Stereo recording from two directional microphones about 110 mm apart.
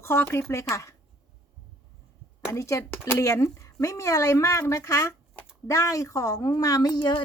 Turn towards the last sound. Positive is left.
turn(degrees=40)  # may be behind; listen again after turning